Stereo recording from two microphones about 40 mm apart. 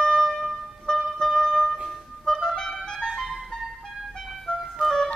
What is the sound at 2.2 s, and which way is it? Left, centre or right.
Clarinet, centre.